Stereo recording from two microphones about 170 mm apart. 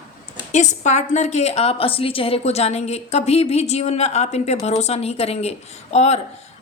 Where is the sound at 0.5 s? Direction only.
45° left (ahead or behind).